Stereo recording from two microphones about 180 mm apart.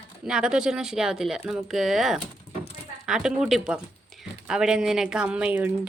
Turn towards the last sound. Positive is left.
turn(degrees=-10)  # may be behind; listen again after turning